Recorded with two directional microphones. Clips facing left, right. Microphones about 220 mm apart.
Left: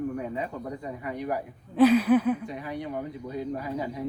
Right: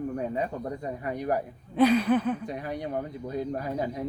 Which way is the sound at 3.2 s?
45° right (ahead or behind).